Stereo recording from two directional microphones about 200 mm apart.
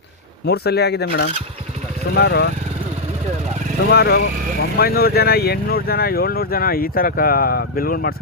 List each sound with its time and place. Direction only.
0.4 s speech: 55° left (ahead or behind)
3.9 s speech: 55° left (ahead or behind)